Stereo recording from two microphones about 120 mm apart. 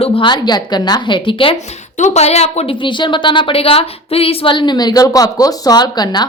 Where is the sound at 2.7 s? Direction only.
40° left (ahead or behind).